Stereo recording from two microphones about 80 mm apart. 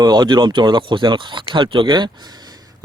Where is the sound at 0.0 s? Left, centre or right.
Right.